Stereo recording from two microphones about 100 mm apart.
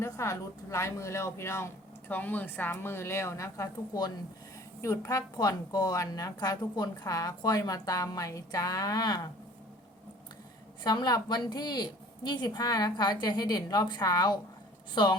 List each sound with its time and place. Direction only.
0.0 s a woman's voice: 30° left (ahead or behind)
10.8 s a woman's voice: 45° left (ahead or behind)